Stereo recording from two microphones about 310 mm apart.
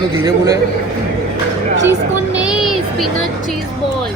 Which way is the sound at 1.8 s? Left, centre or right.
Centre.